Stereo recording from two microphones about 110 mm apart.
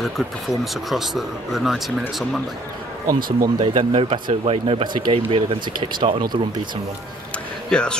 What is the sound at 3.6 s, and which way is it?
Speech, 55° right (ahead or behind).